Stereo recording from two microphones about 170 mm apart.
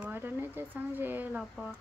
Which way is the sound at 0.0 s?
10° right (ahead or behind).